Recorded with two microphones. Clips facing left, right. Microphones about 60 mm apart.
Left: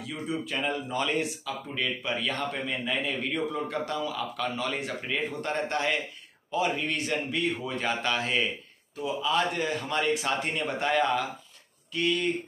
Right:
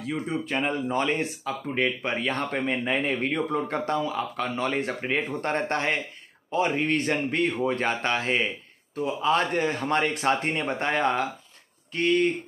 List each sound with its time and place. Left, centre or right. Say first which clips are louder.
0.0 s speech: right 4 dB; right
8.9 s speech: right 4 dB; right